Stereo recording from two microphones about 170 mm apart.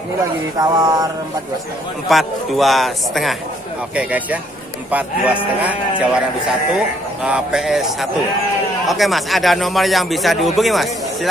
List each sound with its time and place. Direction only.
0.2 s speech: 20° right (ahead or behind)
2.0 s speech: centre (ahead or behind)
3.9 s music: 10° right (ahead or behind)
7.2 s speech: 5° right (ahead or behind)